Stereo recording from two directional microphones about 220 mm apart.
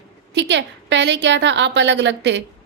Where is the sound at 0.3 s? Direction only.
50° right (ahead or behind).